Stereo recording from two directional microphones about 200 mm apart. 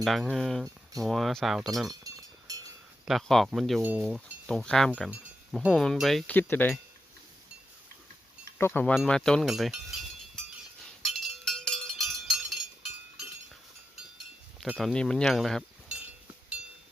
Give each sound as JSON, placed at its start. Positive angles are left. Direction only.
{"t": 0.0, "sound": "speech", "side_deg": 0}
{"t": 1.9, "sound": "a sound", "side_deg": -20}
{"t": 3.1, "sound": "speech", "side_deg": 0}
{"t": 8.5, "sound": "speech", "side_deg": 10}
{"t": 11.0, "sound": "a sound", "side_deg": 0}
{"t": 14.6, "sound": "speech", "side_deg": 0}